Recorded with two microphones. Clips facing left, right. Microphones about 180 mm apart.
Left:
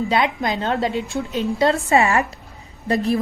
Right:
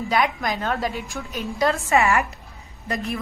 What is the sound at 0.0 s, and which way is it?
A woman's voice, 25° left (ahead or behind).